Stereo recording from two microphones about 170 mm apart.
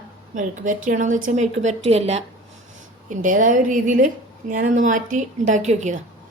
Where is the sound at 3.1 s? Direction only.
50° right (ahead or behind).